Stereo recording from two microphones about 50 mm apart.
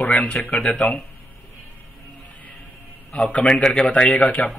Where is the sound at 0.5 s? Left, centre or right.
Left.